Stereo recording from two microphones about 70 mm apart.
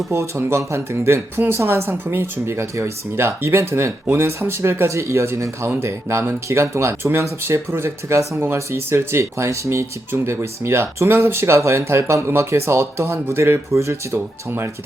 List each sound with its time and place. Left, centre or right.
0.1 s speech: right